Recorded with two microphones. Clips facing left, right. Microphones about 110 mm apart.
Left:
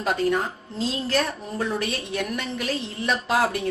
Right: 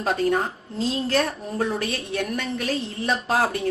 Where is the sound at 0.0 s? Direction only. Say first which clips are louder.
Right 1 dB; 30° right (ahead or behind).